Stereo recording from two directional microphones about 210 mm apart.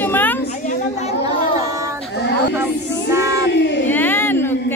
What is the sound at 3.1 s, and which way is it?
Child singing, 15° right (ahead or behind).